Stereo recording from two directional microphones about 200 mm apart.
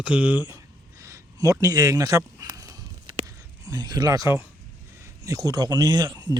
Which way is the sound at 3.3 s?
20° right (ahead or behind).